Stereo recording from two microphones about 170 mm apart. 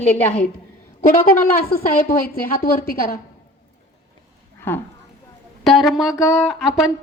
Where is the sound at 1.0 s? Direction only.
60° left (ahead or behind).